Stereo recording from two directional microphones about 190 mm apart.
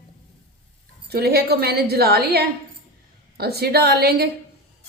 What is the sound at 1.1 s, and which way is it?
A woman's voice, 55° right (ahead or behind).